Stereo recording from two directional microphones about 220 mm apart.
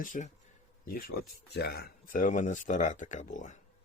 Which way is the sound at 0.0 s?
35° left (ahead or behind).